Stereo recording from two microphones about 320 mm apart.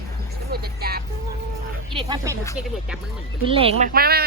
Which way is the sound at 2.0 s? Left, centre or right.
Centre.